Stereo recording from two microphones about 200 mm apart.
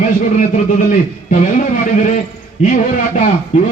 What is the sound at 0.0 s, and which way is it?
Speech, 35° left (ahead or behind).